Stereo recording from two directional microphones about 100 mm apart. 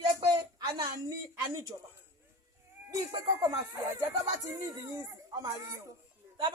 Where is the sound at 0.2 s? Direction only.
40° right (ahead or behind).